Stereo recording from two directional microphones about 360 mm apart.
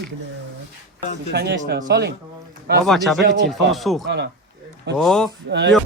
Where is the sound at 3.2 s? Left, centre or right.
Right.